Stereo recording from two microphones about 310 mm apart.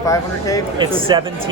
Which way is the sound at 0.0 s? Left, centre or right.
Centre.